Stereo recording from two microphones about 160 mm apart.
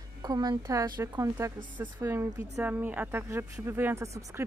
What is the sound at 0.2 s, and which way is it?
Speech, 25° right (ahead or behind).